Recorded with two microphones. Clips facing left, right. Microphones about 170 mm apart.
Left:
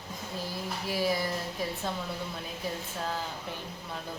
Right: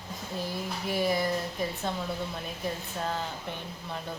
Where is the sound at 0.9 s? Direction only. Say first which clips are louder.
Right 2 dB; centre (ahead or behind).